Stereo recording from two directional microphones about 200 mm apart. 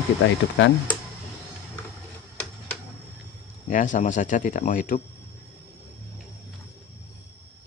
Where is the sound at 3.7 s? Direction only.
40° left (ahead or behind).